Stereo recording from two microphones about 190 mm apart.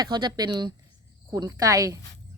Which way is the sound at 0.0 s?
20° right (ahead or behind).